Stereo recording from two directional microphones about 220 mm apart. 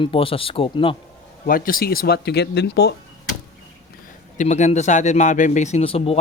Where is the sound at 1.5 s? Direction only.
40° left (ahead or behind).